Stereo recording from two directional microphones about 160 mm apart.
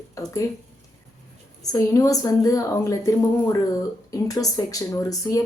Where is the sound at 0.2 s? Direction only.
20° left (ahead or behind).